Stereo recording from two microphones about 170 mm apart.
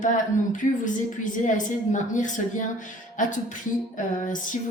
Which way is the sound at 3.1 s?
50° left (ahead or behind).